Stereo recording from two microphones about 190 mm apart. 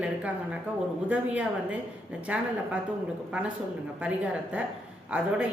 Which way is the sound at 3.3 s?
5° right (ahead or behind).